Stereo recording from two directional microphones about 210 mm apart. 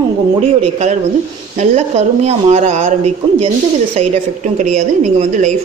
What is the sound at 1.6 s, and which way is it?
A woman's voice, 30° right (ahead or behind).